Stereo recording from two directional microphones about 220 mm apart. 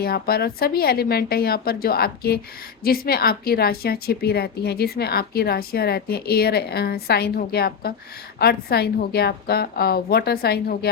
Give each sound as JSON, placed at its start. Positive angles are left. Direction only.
{"t": 0.0, "sound": "a woman's voice", "side_deg": 45}